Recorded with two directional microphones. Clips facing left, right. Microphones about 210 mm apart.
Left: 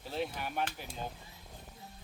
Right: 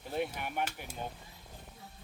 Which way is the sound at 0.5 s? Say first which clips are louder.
Even; 10° right (ahead or behind).